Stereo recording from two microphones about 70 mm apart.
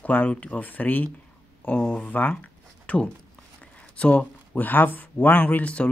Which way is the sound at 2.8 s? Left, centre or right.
Centre.